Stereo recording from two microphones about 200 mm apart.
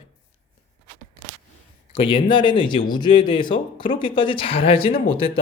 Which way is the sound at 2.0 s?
25° left (ahead or behind).